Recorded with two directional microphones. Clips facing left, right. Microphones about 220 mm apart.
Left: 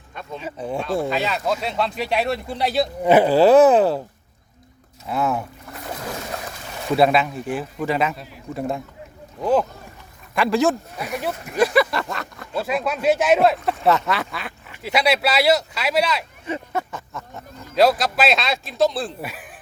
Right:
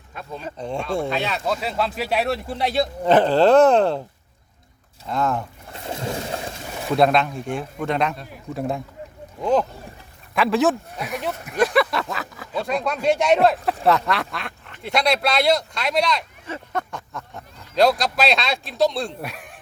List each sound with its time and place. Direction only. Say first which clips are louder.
0.1 s speech: left 1 dB; centre (ahead or behind)
5.0 s speech: left 1 dB; 5° left (ahead or behind)
5.7 s a sound: right 3 dB; 25° right (ahead or behind)
6.8 s speech: left 1 dB; 5° left (ahead or behind)